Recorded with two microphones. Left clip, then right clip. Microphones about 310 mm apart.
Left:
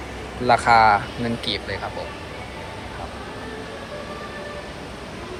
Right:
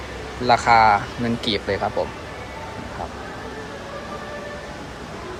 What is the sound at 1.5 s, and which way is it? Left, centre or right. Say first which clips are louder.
Speech: right 3 dB; centre.